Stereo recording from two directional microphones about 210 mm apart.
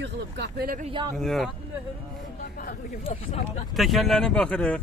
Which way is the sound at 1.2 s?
Centre (ahead or behind).